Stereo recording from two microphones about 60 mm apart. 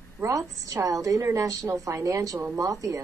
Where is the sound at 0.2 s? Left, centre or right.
Right.